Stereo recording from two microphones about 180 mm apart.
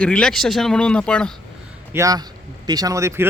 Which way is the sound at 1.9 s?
20° right (ahead or behind).